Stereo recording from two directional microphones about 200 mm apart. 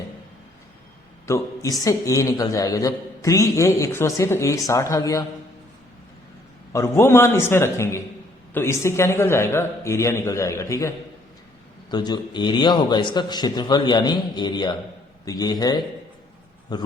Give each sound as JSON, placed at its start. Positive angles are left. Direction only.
{"t": 1.3, "sound": "a man's voice", "side_deg": 15}
{"t": 6.7, "sound": "a man's voice", "side_deg": 15}